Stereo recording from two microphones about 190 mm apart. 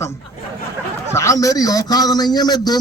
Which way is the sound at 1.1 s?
15° left (ahead or behind).